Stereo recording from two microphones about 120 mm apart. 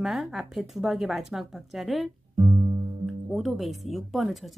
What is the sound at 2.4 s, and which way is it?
Music, 40° right (ahead or behind).